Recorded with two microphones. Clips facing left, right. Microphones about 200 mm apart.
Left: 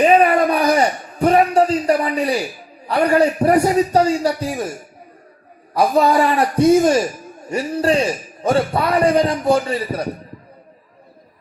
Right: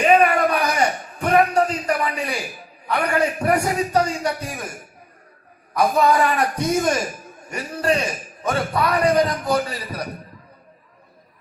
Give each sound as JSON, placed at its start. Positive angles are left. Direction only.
{"t": 0.0, "sound": "a sound", "side_deg": 35}
{"t": 2.8, "sound": "a man's voice", "side_deg": 30}
{"t": 5.7, "sound": "a man's voice", "side_deg": 30}